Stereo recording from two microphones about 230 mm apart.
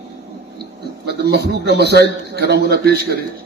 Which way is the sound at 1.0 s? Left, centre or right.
Right.